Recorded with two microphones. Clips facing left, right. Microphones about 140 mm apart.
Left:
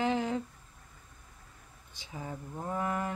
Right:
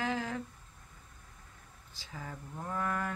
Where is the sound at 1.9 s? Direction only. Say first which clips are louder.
Left 4 dB; 20° left (ahead or behind).